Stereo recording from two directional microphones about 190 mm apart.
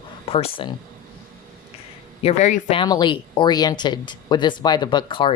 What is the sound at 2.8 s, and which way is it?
Speech, 25° left (ahead or behind).